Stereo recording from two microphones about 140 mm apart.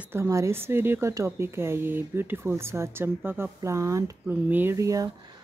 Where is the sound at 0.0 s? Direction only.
20° right (ahead or behind).